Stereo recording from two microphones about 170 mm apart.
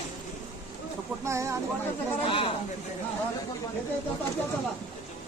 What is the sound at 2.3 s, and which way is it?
Speech, 30° left (ahead or behind).